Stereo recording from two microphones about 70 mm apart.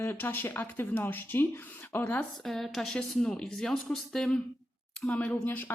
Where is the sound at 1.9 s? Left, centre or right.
Left.